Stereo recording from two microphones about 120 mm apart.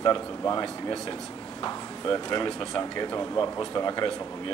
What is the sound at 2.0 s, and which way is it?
Speech, 35° left (ahead or behind).